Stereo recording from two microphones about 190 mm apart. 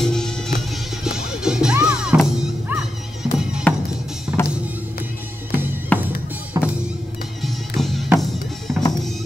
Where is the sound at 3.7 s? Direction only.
10° left (ahead or behind).